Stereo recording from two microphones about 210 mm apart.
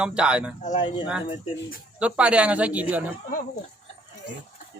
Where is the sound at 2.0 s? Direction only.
5° right (ahead or behind).